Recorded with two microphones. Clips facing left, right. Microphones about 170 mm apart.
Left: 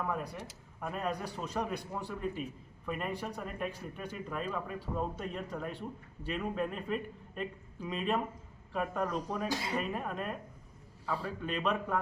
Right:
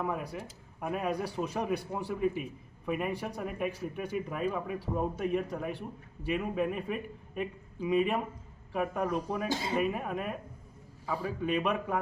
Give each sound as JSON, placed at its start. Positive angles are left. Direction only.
{"t": 0.8, "sound": "speech", "side_deg": -10}
{"t": 9.5, "sound": "speech", "side_deg": -25}
{"t": 9.8, "sound": "speech", "side_deg": -10}